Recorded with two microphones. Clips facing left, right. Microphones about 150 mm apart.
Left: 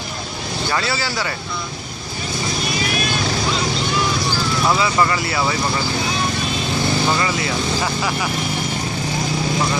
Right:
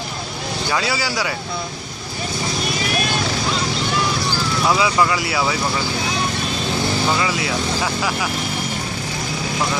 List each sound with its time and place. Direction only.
0.7 s speech: 10° right (ahead or behind)
4.6 s speech: 5° right (ahead or behind)
7.1 s speech: 5° right (ahead or behind)